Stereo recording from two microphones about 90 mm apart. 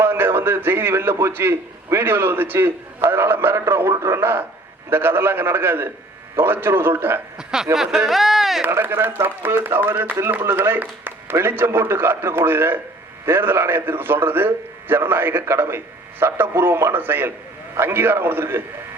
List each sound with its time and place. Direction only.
0.0 s a man's voice: 25° right (ahead or behind)
7.3 s speech: 5° right (ahead or behind)
8.6 s a man's voice: 25° right (ahead or behind)